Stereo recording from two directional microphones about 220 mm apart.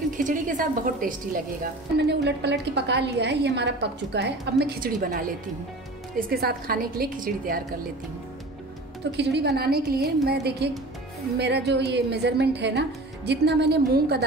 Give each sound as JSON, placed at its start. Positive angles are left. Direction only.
{"t": 0.2, "sound": "a woman's voice", "side_deg": -35}
{"t": 9.1, "sound": "speech", "side_deg": -50}